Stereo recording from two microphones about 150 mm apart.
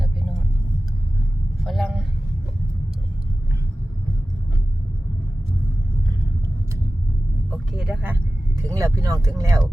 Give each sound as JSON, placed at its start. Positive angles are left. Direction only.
{"t": 1.6, "sound": "vehicle", "side_deg": 0}
{"t": 7.7, "sound": "vehicle", "side_deg": 0}
{"t": 8.6, "sound": "vehicle", "side_deg": -20}